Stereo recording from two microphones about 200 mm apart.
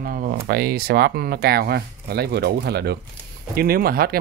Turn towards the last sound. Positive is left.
turn(degrees=-50)  # may be behind; listen again after turning